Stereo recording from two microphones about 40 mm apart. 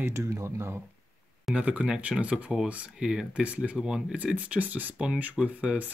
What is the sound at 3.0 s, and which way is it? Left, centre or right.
Speech, centre.